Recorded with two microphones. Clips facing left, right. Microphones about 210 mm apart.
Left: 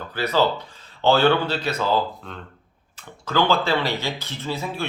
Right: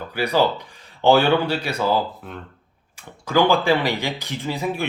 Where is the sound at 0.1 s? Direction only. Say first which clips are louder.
Right 1 dB; 15° right (ahead or behind).